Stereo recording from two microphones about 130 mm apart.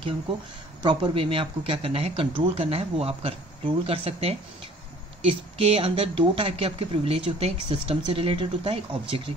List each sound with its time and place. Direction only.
0.8 s speech: 40° right (ahead or behind)